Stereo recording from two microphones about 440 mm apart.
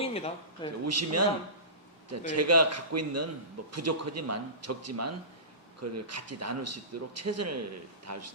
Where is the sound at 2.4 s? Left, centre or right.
Right.